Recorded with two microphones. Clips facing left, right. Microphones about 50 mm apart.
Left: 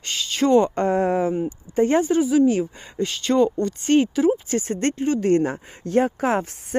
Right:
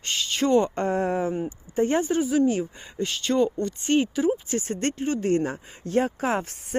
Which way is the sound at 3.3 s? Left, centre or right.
Left.